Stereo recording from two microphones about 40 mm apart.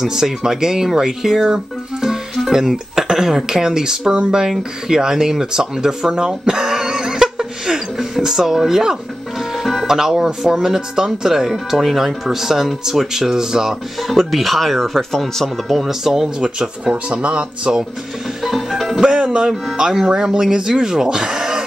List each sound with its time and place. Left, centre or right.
0.0 s speech: centre
6.1 s a sound: centre
9.6 s speech: centre
14.0 s speech: centre
15.8 s speech: centre
16.3 s speech: centre
18.4 s music: centre
18.9 s music: right
19.8 s speech: centre